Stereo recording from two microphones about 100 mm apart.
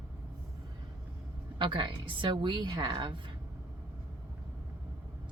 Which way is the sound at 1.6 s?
55° right (ahead or behind).